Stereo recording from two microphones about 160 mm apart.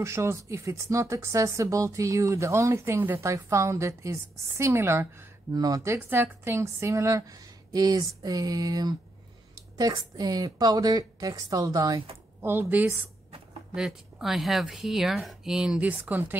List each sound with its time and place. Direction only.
0.0 s a woman's voice: 15° right (ahead or behind)
5.9 s a woman's voice: 10° right (ahead or behind)